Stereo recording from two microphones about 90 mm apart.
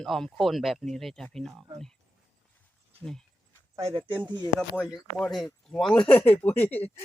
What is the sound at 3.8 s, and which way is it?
Speech, 80° right.